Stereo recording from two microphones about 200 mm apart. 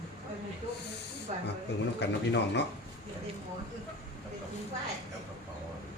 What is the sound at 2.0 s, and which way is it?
Speech, 60° left (ahead or behind).